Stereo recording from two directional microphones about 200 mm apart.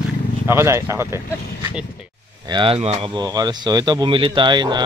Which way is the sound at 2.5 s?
25° right (ahead or behind).